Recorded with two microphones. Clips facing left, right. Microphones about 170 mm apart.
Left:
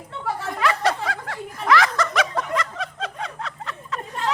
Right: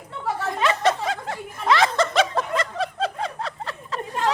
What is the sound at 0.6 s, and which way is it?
Snicker, 20° right (ahead or behind).